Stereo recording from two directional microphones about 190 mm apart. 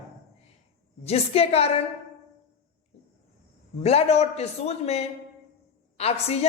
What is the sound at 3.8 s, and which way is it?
A woman's voice, 35° left (ahead or behind).